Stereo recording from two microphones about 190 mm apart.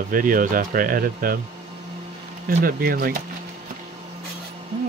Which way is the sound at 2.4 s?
55° right (ahead or behind).